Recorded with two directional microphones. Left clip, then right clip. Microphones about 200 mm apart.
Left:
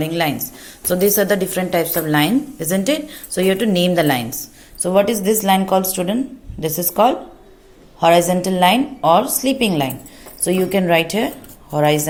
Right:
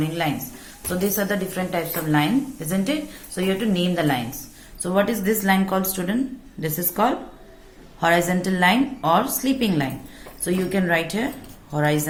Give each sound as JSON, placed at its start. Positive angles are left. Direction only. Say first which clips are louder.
{"t": 0.0, "sound": "speech", "louder": "left 5 dB", "side_deg": 40}
{"t": 4.8, "sound": "a woman's voice", "louder": "left 6 dB", "side_deg": 30}